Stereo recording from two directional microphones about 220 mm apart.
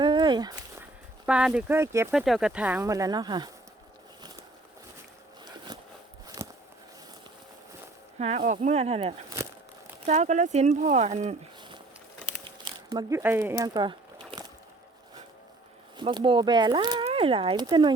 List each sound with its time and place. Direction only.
0.0 s a sound: 20° right (ahead or behind)
1.3 s speech: 5° right (ahead or behind)
2.1 s speech: centre (ahead or behind); by 3.5 s 20° right (ahead or behind)
6.2 s a sound: 15° right (ahead or behind)
8.2 s speech: 30° right (ahead or behind)
9.3 s crumpling: 15° right (ahead or behind)
10.1 s speech: 30° right (ahead or behind)
12.5 s a sound: 15° right (ahead or behind)
16.0 s speech: 20° right (ahead or behind)